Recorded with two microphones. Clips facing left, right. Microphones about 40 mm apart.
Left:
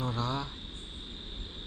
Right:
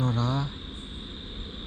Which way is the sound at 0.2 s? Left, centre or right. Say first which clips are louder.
Right 4 dB; left.